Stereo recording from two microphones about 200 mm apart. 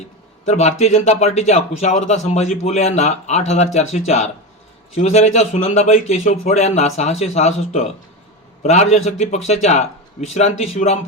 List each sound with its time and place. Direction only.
0.4 s speech: 35° left (ahead or behind)